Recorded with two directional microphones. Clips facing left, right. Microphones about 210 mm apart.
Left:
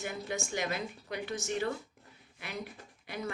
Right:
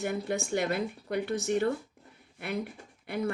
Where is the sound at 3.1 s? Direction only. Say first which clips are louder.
Right 7 dB; 55° right (ahead or behind).